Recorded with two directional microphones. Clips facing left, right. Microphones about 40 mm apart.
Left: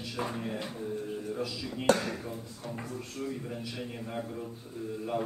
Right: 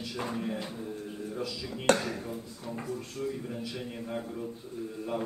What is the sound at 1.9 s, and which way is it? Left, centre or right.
Speech, right.